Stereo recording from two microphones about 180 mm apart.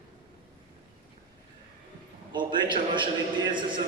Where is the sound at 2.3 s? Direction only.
25° right (ahead or behind).